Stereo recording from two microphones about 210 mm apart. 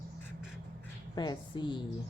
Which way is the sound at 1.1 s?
20° left (ahead or behind).